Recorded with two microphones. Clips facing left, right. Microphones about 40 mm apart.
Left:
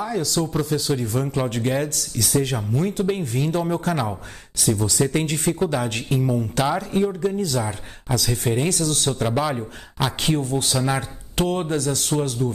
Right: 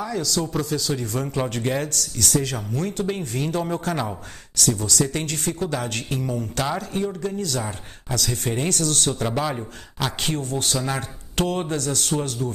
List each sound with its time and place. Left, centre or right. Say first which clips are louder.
0.0 s speech: left 2 dB; centre
2.1 s a man's voice: left 2 dB; centre
4.7 s speech: left 3 dB; left; by 12.4 s centre